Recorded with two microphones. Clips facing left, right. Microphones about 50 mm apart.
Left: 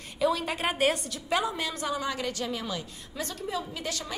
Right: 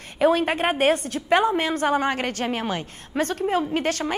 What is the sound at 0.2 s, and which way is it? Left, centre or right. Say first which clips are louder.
A woman's voice: right 8 dB; right.